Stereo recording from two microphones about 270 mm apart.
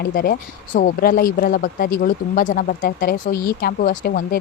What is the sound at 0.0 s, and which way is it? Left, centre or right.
Speech, left.